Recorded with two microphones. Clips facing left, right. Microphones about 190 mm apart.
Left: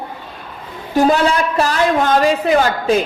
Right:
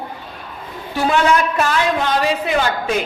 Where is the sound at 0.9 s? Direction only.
40° left (ahead or behind).